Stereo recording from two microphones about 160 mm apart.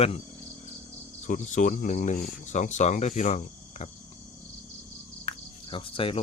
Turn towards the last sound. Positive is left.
turn(degrees=35)  # may be behind; listen again after turning